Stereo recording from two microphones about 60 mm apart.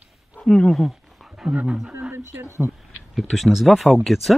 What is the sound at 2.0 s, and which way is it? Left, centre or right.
Speech, right.